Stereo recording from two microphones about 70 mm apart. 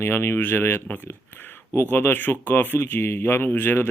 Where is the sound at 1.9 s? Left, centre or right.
Left.